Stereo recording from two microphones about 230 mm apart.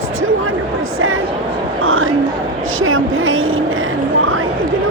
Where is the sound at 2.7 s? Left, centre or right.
Right.